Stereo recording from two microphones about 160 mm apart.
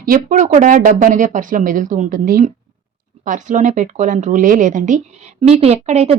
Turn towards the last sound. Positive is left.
turn(degrees=-40)  # may be behind; listen again after turning